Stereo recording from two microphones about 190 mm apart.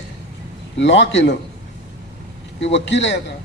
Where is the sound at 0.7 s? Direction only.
70° left (ahead or behind).